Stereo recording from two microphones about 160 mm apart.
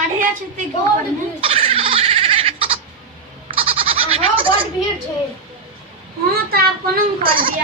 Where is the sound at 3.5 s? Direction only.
35° right (ahead or behind).